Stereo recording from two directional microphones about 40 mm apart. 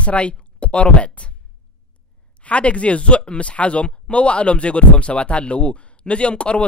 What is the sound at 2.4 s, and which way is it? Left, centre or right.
Speech, left.